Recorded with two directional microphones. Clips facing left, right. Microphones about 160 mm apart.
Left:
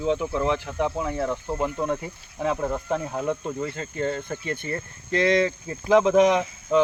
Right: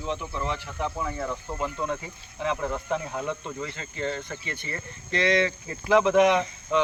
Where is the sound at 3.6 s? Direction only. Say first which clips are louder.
Left 5 dB; 45° left (ahead or behind).